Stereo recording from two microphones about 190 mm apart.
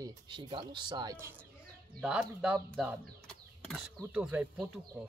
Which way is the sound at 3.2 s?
5° left (ahead or behind).